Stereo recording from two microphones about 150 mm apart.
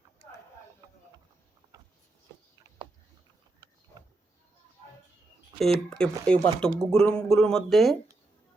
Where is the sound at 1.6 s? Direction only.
25° right (ahead or behind).